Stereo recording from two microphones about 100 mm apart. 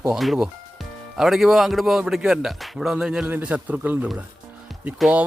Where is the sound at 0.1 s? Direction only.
5° right (ahead or behind).